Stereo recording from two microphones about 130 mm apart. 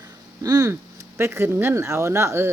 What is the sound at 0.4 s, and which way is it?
Speech, 25° right (ahead or behind).